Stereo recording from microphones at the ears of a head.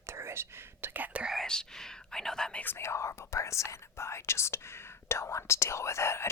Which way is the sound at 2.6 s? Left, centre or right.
Left.